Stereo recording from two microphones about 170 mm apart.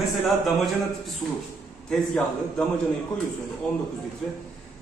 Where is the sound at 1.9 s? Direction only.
Centre (ahead or behind).